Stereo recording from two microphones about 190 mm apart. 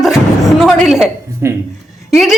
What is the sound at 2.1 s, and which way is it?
Speech, centre (ahead or behind).